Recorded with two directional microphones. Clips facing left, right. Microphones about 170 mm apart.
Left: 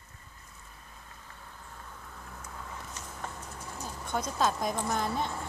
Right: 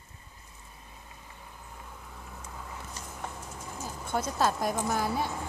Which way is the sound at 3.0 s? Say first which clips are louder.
Right 1 dB; 5° right (ahead or behind).